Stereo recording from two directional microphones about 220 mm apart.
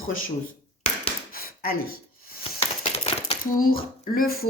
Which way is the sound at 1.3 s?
40° left (ahead or behind).